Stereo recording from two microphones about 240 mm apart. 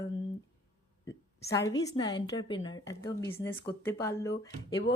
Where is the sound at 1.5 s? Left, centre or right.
Centre.